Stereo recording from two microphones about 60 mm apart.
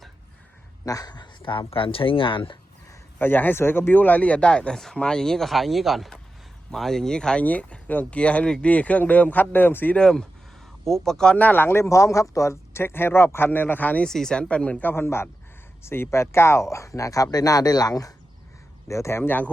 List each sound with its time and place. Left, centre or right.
2.0 s speech: left
3.2 s speech: left; by 7.4 s centre
7.4 s speech: left
9.9 s speech: centre
11.3 s speech: left
14.0 s speech: centre
14.8 s speech: left
17.3 s speech: left
18.9 s speech: left